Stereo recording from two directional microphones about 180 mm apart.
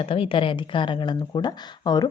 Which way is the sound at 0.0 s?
30° left (ahead or behind).